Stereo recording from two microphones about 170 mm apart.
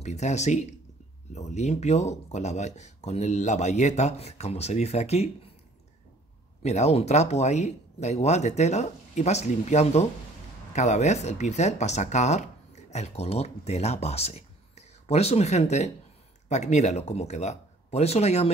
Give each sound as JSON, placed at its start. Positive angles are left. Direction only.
{"t": 0.0, "sound": "speech", "side_deg": 40}
{"t": 6.6, "sound": "speech", "side_deg": 40}